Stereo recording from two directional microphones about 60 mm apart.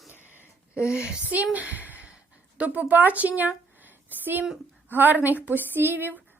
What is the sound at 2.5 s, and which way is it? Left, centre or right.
A woman's voice, right.